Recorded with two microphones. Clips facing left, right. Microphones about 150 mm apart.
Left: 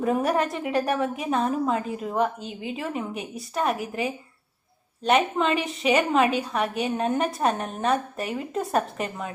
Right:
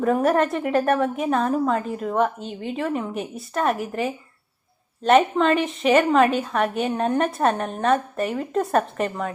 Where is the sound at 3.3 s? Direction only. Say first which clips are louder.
Right 2 dB; centre (ahead or behind).